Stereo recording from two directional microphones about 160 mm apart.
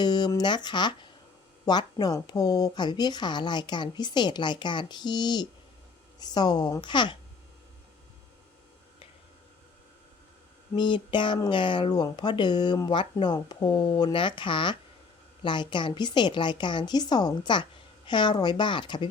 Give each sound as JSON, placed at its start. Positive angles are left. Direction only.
{"t": 0.0, "sound": "speech", "side_deg": 25}
{"t": 10.8, "sound": "speech", "side_deg": 30}